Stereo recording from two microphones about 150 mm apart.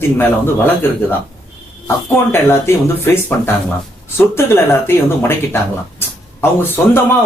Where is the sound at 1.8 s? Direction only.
15° left (ahead or behind).